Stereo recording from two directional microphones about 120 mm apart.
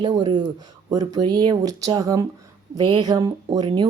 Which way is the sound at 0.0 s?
35° right (ahead or behind).